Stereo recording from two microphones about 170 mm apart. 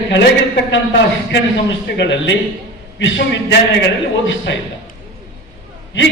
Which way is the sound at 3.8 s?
90° left.